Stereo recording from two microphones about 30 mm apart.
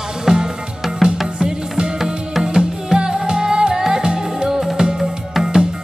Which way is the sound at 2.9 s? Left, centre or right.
Right.